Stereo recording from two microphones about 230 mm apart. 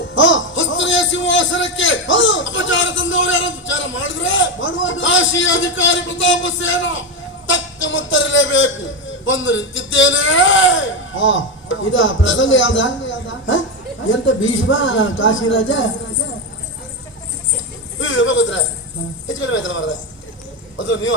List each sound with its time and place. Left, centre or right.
0.1 s music: left
7.4 s a man's voice: left
18.0 s a sound: left
19.3 s speech: left